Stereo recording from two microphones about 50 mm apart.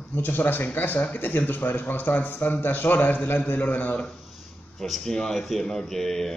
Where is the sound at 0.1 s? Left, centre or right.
Left.